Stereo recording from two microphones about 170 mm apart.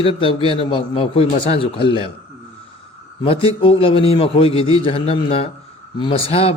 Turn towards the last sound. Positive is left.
turn(degrees=35)  # may be behind; listen again after turning